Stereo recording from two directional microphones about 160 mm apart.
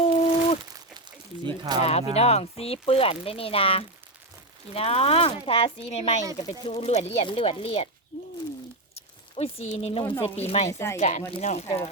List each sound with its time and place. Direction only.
0.0 s a sound: 40° left (ahead or behind)
1.5 s speech: 25° right (ahead or behind)
1.8 s speech: 40° left (ahead or behind)
9.0 s a sound: 40° left (ahead or behind)
10.2 s speech: 40° left (ahead or behind)
10.7 s speech: 15° left (ahead or behind)
10.9 s speech: 45° left (ahead or behind)